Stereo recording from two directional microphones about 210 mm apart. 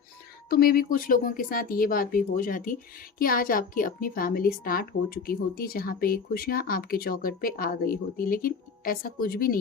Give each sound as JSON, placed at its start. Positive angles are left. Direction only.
{"t": 0.5, "sound": "a woman's voice", "side_deg": 45}